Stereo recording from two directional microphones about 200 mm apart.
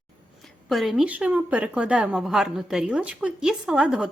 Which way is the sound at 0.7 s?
Centre (ahead or behind).